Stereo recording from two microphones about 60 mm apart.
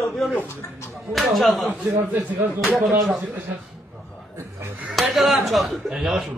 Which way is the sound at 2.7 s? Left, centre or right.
Right.